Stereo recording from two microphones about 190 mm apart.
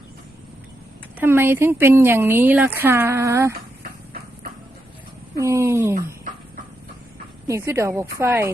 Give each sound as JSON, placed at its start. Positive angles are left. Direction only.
{"t": 1.2, "sound": "speech", "side_deg": -10}
{"t": 5.4, "sound": "speech", "side_deg": -15}
{"t": 7.4, "sound": "speech", "side_deg": -15}